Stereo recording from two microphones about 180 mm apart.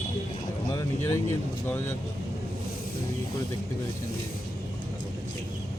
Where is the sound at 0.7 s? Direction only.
15° left (ahead or behind).